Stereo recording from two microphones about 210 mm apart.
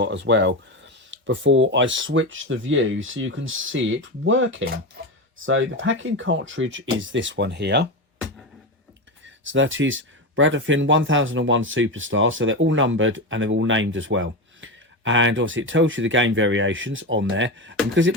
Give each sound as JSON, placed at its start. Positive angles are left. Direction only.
{"t": 0.0, "sound": "speech", "side_deg": -60}
{"t": 9.2, "sound": "speech", "side_deg": -65}